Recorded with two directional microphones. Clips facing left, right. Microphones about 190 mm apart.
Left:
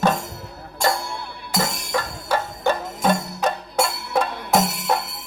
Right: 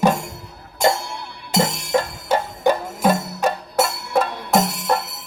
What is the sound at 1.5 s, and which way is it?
Music, 25° right (ahead or behind).